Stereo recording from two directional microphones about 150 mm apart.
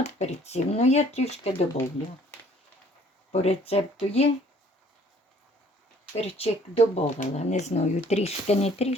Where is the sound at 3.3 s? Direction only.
45° left (ahead or behind).